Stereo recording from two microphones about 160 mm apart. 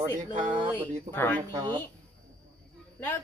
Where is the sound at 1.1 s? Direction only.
15° left (ahead or behind).